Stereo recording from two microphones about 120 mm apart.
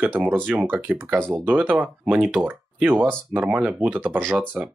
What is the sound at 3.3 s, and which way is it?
Speech, 15° right (ahead or behind).